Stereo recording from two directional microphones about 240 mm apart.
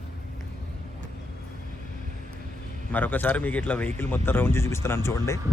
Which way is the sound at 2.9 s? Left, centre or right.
Centre.